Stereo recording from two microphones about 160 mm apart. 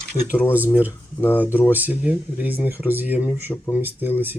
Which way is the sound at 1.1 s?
15° left (ahead or behind).